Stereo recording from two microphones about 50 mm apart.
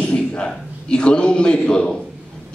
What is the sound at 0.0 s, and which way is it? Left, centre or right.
A man's voice, left.